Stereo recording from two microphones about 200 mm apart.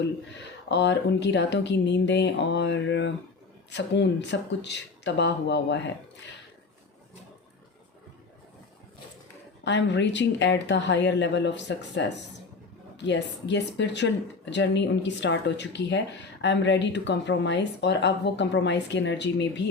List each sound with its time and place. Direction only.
0.7 s speech: 60° left (ahead or behind)
9.6 s speech: 60° left (ahead or behind)